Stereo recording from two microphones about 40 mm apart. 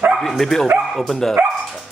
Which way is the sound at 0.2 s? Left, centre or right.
Centre.